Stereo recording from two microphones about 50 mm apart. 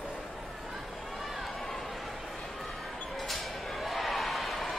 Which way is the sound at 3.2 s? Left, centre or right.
Centre.